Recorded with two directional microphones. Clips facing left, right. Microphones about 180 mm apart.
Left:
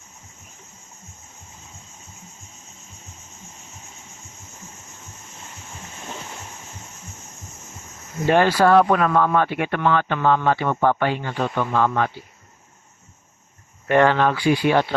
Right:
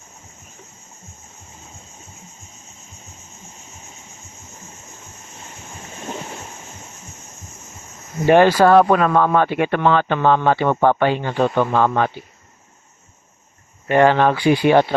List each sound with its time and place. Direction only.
8.3 s speech: 20° right (ahead or behind)
8.7 s speech: 35° right (ahead or behind)
13.9 s speech: 15° right (ahead or behind)